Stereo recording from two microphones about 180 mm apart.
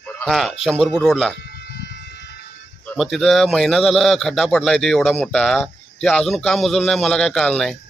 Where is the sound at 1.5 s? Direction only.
65° left (ahead or behind).